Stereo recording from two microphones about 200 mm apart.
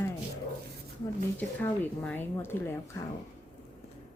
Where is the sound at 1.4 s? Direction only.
10° left (ahead or behind).